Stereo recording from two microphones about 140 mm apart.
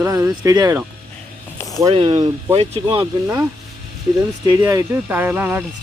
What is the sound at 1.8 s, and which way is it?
Speech, 40° right (ahead or behind).